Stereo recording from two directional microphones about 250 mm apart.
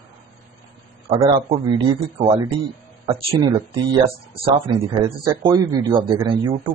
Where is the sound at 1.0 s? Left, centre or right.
Right.